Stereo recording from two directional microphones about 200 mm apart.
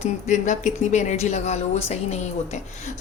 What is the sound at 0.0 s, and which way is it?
Speech, 35° left (ahead or behind).